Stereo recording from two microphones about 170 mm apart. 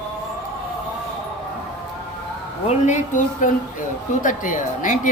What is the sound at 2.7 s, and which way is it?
A woman's voice, 45° left (ahead or behind).